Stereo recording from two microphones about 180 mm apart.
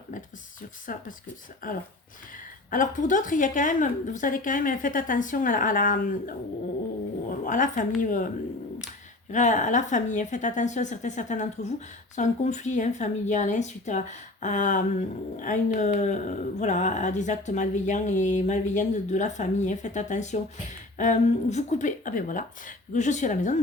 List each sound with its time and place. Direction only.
0.9 s speech: 50° left (ahead or behind)
9.3 s speech: 45° left (ahead or behind)